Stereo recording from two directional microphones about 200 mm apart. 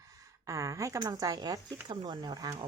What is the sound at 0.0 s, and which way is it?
Speech, 15° right (ahead or behind).